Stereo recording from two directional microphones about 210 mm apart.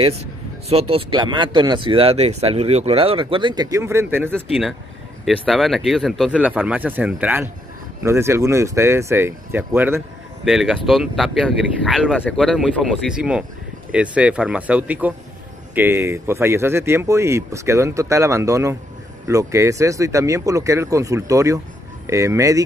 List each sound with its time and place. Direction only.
0.7 s speech: 30° right (ahead or behind); by 4.3 s 10° right (ahead or behind)
5.2 s speech: centre (ahead or behind); by 22.7 s 15° right (ahead or behind)